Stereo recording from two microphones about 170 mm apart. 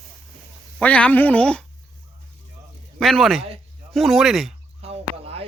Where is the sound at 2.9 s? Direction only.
Centre (ahead or behind).